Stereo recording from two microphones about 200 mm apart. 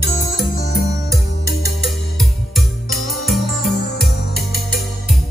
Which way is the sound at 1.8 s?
Centre (ahead or behind).